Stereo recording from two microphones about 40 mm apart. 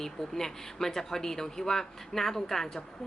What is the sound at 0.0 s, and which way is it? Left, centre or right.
Speech, centre.